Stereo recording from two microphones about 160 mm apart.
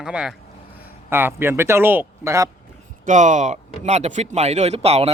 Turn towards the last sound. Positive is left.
turn(degrees=-40)  # may be behind; listen again after turning